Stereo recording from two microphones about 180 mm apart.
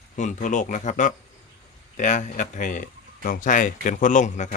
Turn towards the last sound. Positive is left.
turn(degrees=45)  # may be behind; listen again after turning